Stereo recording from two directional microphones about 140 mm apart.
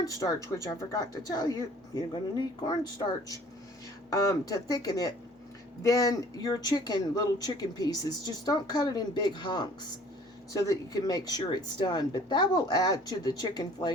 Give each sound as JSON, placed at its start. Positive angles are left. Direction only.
{"t": 0.0, "sound": "speech", "side_deg": 25}